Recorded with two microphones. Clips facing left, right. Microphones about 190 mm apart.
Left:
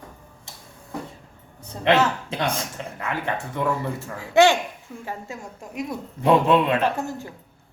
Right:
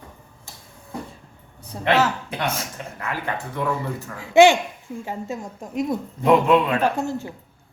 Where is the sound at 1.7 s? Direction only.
10° right (ahead or behind).